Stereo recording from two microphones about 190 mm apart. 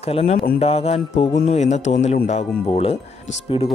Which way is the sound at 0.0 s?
30° left (ahead or behind).